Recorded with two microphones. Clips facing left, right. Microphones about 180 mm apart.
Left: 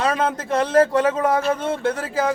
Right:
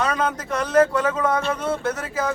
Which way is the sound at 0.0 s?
25° left (ahead or behind).